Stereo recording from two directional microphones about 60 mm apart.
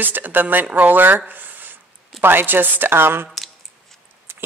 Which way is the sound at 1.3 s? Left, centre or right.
Right.